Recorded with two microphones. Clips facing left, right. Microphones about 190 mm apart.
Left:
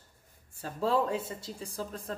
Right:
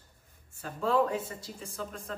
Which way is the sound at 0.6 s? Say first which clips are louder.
Right 1 dB; 35° left (ahead or behind).